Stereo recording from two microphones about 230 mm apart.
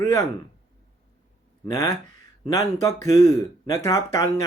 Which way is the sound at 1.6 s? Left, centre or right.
Centre.